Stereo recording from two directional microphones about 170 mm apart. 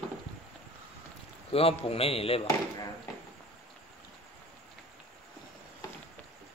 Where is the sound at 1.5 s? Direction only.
35° left (ahead or behind).